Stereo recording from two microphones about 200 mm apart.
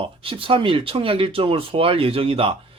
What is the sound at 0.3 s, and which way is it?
A man's voice, 25° right (ahead or behind).